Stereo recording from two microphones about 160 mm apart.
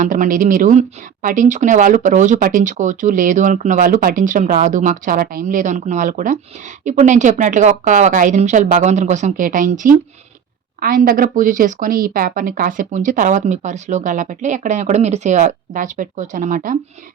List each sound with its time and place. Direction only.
0.0 s speech: 55° right (ahead or behind)